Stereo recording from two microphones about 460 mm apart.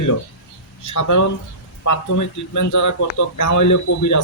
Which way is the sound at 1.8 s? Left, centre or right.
Left.